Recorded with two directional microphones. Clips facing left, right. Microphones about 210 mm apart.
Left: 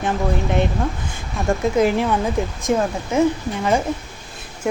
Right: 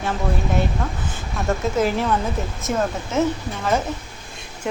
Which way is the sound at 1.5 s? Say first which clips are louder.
Left 3 dB; 15° left (ahead or behind).